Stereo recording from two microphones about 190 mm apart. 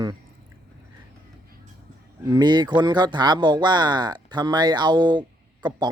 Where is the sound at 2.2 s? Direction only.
25° right (ahead or behind).